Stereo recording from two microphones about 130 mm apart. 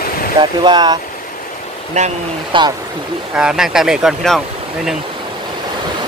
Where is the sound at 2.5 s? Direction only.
40° right (ahead or behind).